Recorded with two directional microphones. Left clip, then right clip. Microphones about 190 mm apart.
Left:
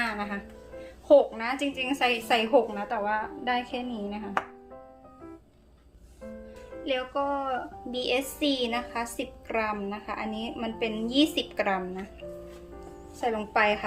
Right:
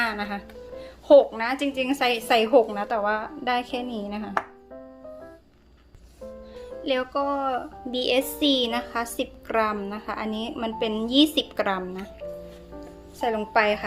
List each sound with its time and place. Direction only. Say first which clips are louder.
0.0 s music: right 4 dB; 45° right (ahead or behind)
1.0 s a woman's voice: right 4 dB; 45° right (ahead or behind)
6.8 s a woman's voice: right 4 dB; 50° right (ahead or behind)
13.1 s a woman's voice: right 3 dB; 40° right (ahead or behind)